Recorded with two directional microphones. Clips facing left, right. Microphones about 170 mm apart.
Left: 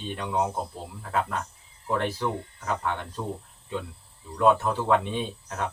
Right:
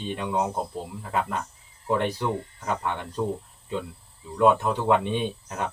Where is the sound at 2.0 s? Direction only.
15° right (ahead or behind).